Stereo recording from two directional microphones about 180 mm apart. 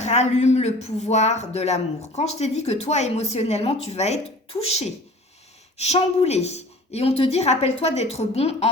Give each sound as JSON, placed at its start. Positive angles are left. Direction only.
{"t": 0.0, "sound": "speech", "side_deg": 40}